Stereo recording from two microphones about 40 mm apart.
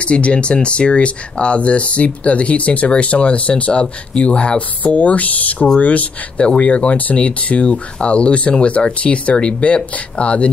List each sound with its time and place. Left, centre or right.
0.0 s speech: left